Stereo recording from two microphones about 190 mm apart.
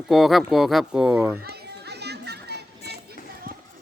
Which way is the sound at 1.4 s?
55° right (ahead or behind).